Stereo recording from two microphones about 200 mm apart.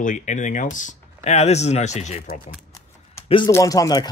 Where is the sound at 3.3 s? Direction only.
25° left (ahead or behind).